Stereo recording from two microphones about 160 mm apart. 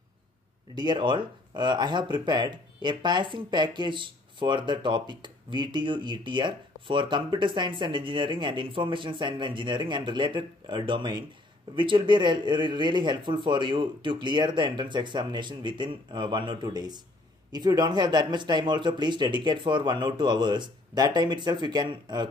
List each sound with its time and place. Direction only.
0.7 s speech: 30° right (ahead or behind)